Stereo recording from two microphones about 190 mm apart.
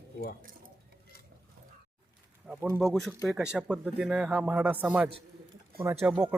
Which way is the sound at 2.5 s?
10° right (ahead or behind).